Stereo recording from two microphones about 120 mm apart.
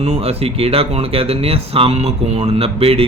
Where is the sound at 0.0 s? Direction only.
60° right (ahead or behind).